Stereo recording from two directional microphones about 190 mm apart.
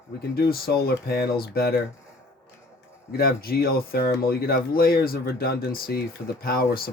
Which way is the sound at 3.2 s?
55° left (ahead or behind).